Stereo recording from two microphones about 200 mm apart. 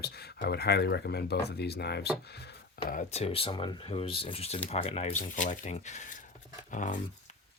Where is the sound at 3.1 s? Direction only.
30° left (ahead or behind).